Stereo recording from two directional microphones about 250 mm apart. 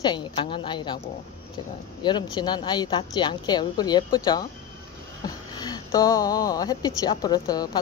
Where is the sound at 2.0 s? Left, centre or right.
Centre.